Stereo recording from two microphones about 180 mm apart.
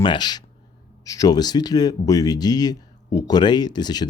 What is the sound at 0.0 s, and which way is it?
Speech, 25° left (ahead or behind).